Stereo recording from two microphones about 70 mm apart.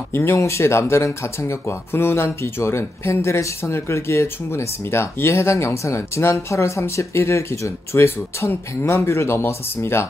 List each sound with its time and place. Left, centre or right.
0.1 s speech: left